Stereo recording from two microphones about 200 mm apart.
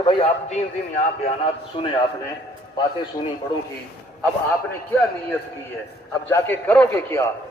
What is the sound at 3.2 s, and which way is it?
Speech, 25° left (ahead or behind).